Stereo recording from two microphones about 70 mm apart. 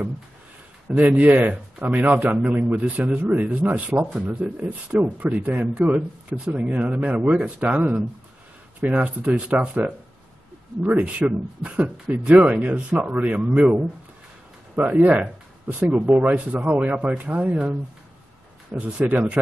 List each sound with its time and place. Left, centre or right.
0.9 s speech: right
8.9 s speech: centre
14.9 s speech: centre